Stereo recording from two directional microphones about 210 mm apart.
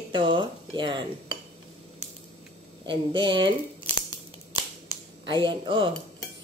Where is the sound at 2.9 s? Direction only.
20° right (ahead or behind).